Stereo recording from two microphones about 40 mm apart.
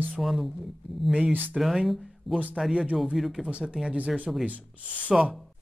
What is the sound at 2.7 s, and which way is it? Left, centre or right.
Speech, right.